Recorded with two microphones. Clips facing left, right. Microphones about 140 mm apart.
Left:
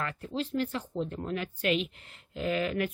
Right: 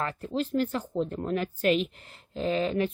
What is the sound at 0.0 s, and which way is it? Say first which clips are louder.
Speech: right 4 dB; 35° right (ahead or behind).